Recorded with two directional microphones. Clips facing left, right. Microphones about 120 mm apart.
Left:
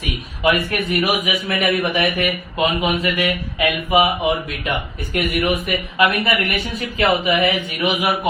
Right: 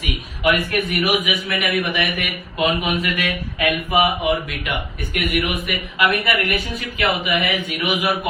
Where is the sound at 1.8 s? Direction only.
25° left (ahead or behind).